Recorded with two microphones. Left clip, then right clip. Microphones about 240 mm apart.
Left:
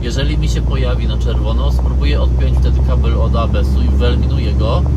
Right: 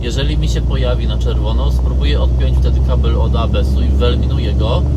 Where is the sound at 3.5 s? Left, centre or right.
Centre.